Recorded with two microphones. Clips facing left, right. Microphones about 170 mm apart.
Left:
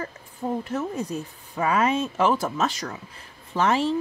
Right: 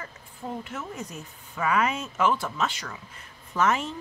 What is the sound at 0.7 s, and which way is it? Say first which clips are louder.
Speech: left 8 dB; 35° left (ahead or behind).